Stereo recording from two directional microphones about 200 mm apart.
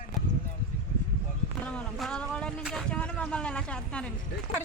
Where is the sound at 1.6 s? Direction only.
5° left (ahead or behind).